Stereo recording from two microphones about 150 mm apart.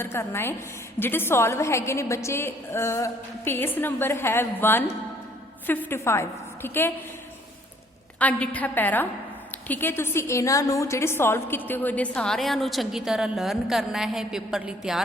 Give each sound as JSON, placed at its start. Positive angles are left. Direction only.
{"t": 0.0, "sound": "a woman's voice", "side_deg": 15}
{"t": 8.2, "sound": "a woman's voice", "side_deg": 10}